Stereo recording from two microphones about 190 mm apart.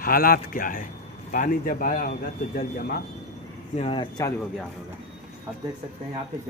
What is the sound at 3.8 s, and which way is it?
Speech, 25° left (ahead or behind).